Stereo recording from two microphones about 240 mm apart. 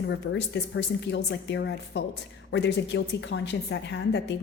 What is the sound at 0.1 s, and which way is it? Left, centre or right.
A woman's voice, left.